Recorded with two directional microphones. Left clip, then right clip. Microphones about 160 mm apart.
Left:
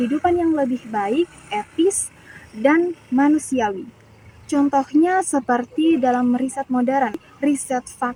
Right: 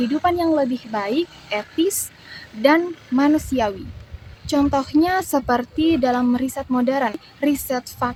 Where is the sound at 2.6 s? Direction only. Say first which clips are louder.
Right 1 dB; 40° right (ahead or behind).